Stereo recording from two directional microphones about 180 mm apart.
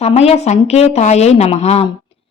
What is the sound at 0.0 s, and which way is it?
A woman's voice, 35° left (ahead or behind).